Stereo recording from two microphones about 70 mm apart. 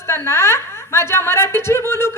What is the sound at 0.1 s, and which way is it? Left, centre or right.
A woman's voice, left.